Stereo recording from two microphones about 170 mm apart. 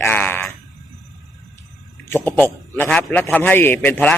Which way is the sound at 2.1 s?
10° left (ahead or behind).